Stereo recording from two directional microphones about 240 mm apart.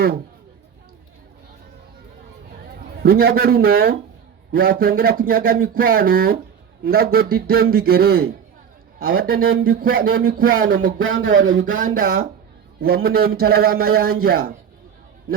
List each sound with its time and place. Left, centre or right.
3.0 s speech: right
11.3 s speech: right
11.8 s speech: right